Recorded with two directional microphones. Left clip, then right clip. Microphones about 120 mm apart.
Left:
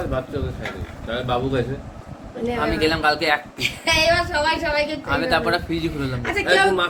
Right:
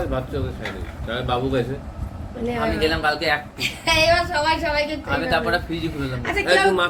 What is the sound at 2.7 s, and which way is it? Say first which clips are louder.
Speech: left 3 dB; 90° left.